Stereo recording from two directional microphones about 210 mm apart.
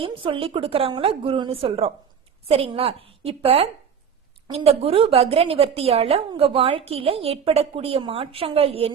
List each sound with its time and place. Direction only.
0.0 s a woman's voice: 25° right (ahead or behind)